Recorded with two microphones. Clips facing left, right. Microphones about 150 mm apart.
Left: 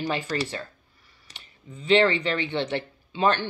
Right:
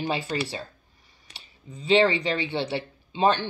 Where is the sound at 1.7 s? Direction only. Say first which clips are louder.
Even; 15° right (ahead or behind).